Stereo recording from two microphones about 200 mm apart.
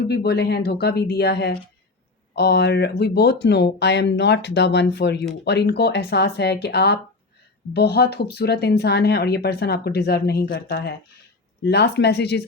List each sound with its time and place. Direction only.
0.1 s speech: 55° left (ahead or behind)